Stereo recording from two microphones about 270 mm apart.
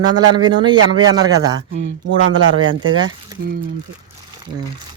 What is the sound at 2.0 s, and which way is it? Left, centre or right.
Speech, right.